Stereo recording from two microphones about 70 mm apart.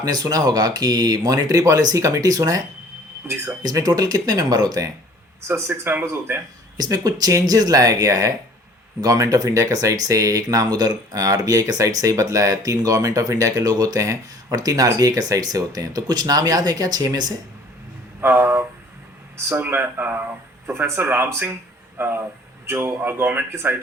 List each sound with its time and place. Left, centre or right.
0.0 s speech: right
5.5 s speech: right
6.7 s speech: right
18.2 s speech: right
20.7 s speech: right